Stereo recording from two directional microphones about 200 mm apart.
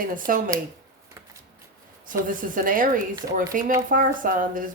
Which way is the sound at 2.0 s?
45° right (ahead or behind).